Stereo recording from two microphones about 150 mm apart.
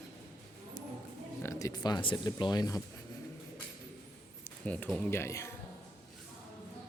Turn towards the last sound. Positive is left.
turn(degrees=20)  # may be behind; listen again after turning